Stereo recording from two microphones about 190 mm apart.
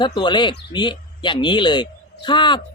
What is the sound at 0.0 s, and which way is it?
A man's voice, 25° left (ahead or behind).